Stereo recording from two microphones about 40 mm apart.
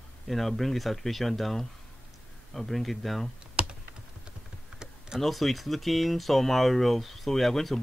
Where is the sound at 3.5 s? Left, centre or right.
Right.